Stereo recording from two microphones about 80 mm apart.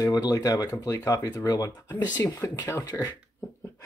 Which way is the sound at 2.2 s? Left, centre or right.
Left.